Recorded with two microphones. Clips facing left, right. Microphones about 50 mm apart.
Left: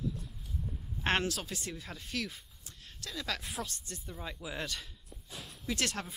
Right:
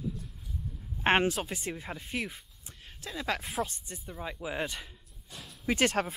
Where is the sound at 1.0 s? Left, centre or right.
Right.